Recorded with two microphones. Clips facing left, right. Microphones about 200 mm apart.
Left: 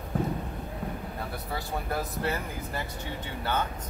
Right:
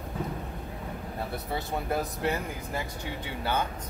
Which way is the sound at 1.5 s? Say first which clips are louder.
Right 2 dB; 20° right (ahead or behind).